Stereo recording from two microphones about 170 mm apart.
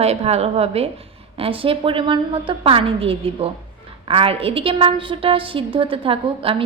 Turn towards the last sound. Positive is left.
turn(degrees=-35)  # may be behind; listen again after turning